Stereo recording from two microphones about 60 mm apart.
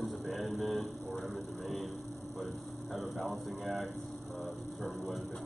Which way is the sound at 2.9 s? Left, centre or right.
Centre.